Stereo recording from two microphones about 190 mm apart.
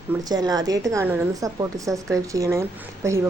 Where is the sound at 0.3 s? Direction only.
20° right (ahead or behind).